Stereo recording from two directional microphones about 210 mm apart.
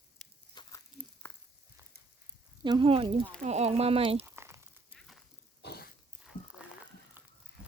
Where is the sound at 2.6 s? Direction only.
20° right (ahead or behind).